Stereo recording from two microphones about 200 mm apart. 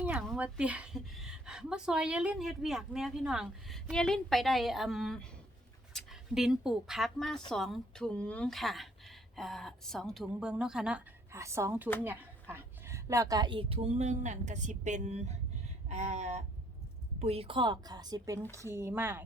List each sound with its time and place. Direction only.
0.0 s a woman's voice: 5° right (ahead or behind)